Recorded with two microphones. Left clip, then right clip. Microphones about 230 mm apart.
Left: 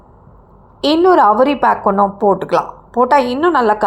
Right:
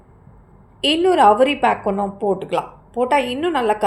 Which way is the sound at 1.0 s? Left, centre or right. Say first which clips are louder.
Left 3 dB; centre.